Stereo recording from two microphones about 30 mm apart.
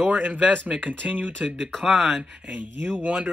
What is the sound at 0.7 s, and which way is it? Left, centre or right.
Speech, right.